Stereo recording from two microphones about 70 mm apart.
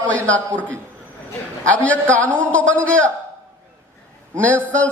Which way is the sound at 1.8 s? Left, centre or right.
Left.